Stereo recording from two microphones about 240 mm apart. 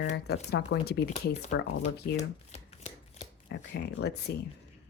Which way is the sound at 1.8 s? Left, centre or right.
Left.